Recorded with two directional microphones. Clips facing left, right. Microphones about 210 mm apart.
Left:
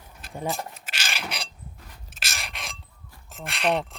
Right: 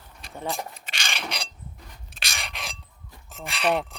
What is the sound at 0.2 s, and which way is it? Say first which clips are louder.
Speech: left 1 dB; 5° left (ahead or behind).